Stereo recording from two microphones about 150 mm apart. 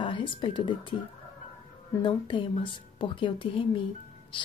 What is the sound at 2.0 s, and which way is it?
Speech, 30° left (ahead or behind).